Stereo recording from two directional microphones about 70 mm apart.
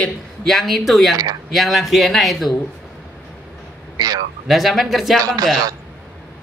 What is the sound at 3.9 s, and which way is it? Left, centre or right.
Speech, right.